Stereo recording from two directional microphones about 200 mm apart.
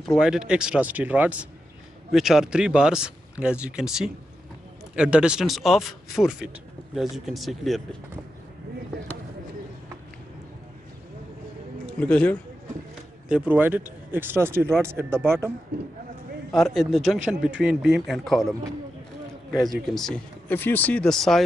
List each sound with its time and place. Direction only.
0.0 s speech: centre (ahead or behind)
11.8 s a man's voice: 5° left (ahead or behind)
13.3 s speech: 5° right (ahead or behind)
15.7 s speech: 55° right (ahead or behind)
16.5 s speech: centre (ahead or behind)